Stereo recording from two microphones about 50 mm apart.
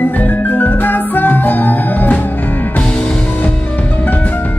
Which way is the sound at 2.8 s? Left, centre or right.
Left.